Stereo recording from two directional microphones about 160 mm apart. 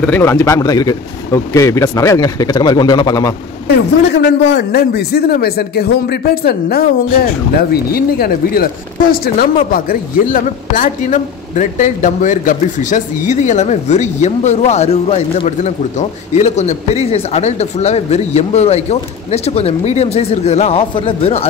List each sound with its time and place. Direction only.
0.0 s a man's voice: 10° left (ahead or behind)
3.6 s a woman's voice: 90° left; by 21.5 s 40° left (ahead or behind)